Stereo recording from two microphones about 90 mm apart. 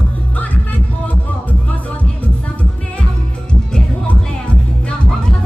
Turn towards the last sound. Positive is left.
turn(degrees=10)  # may be behind; listen again after turning